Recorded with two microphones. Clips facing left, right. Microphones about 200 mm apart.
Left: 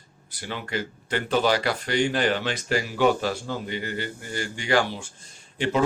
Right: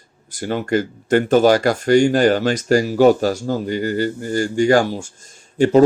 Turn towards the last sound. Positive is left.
turn(degrees=-40)  # may be behind; listen again after turning